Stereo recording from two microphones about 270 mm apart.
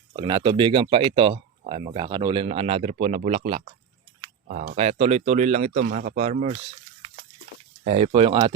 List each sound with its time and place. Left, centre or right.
0.1 s speech: centre
7.9 s speech: right